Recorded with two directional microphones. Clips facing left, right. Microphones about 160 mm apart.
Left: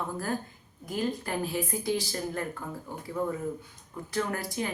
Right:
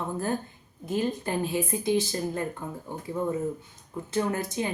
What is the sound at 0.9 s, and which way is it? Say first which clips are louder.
Speech: right 3 dB; 25° right (ahead or behind).